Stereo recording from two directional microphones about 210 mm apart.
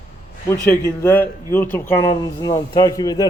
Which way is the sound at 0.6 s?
10° left (ahead or behind).